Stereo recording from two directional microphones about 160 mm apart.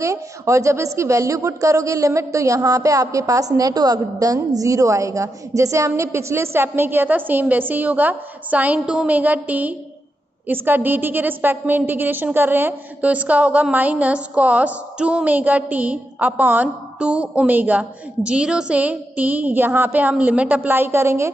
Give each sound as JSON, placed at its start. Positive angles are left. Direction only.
{"t": 0.0, "sound": "a woman's voice", "side_deg": -20}